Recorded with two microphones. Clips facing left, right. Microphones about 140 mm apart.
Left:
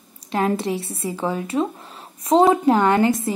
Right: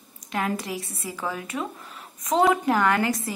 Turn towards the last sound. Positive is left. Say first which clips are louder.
# left 6 dB
turn(degrees=25)  # may be behind; listen again after turning